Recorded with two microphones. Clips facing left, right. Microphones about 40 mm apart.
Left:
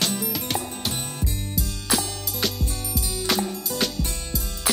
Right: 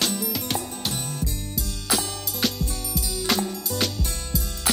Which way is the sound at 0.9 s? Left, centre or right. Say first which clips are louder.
Even; left.